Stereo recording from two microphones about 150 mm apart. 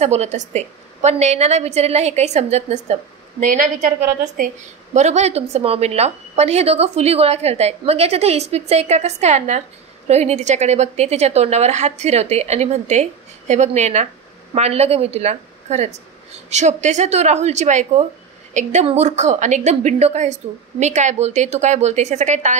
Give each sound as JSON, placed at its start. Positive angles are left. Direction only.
{"t": 0.0, "sound": "a woman's voice", "side_deg": -45}
{"t": 4.4, "sound": "a woman's voice", "side_deg": -65}
{"t": 4.9, "sound": "a woman's voice", "side_deg": -50}